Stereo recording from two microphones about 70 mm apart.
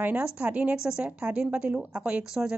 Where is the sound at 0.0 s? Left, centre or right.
Centre.